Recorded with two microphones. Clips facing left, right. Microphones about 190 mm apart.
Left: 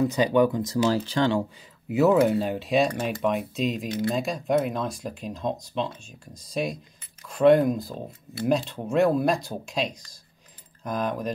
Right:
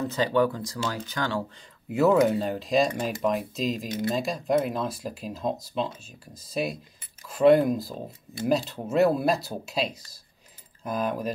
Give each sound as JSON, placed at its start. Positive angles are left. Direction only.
{"t": 0.0, "sound": "speech", "side_deg": 15}
{"t": 1.9, "sound": "speech", "side_deg": 0}